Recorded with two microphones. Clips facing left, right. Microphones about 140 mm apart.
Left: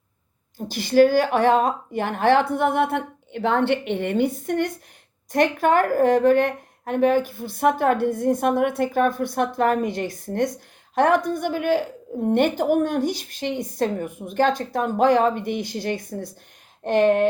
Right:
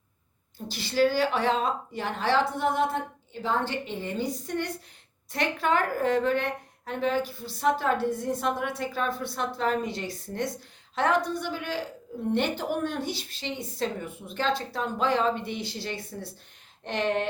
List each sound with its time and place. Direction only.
0.7 s a woman's voice: 50° left (ahead or behind)